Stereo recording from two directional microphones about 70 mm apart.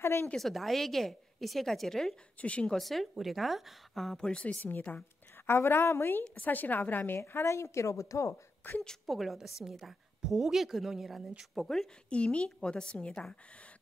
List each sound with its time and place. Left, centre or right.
0.0 s speech: left
0.4 s a woman's voice: centre
2.3 s a woman's voice: centre
2.7 s a woman's voice: centre
5.5 s a woman's voice: left
6.2 s a woman's voice: left
8.8 s a woman's voice: centre
12.1 s a woman's voice: centre